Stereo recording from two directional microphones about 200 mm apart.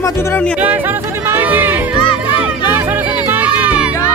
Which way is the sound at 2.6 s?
10° right (ahead or behind).